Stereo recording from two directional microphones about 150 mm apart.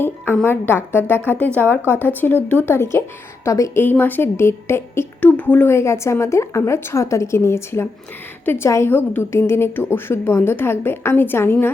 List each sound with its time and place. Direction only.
0.4 s a woman's voice: 15° left (ahead or behind)